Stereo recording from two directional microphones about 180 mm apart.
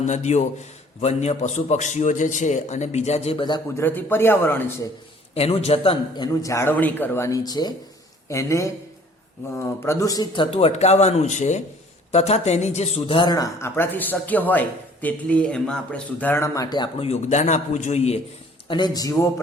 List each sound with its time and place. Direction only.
0.0 s a man's voice: 40° left (ahead or behind)
3.8 s a man's voice: 10° left (ahead or behind)
5.3 s a man's voice: 35° left (ahead or behind)
18.7 s speech: 20° left (ahead or behind)